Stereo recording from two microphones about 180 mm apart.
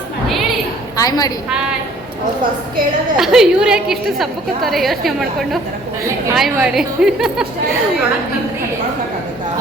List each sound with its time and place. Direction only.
0.9 s a woman's voice: 20° left (ahead or behind)
3.2 s a woman's voice: 5° right (ahead or behind)